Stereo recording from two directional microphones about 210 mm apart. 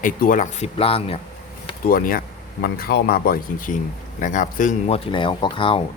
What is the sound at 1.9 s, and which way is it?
Speech, 45° left (ahead or behind).